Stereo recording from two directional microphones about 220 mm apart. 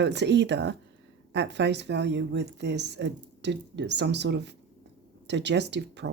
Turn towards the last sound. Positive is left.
turn(degrees=-50)  # may be behind; listen again after turning